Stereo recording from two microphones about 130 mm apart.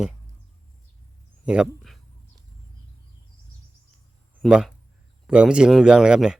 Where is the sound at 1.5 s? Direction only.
5° right (ahead or behind).